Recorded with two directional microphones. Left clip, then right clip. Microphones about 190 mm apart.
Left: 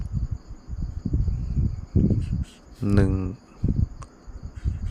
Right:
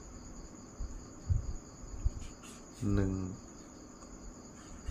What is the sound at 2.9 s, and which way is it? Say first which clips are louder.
Speech: left 11 dB; 60° left (ahead or behind).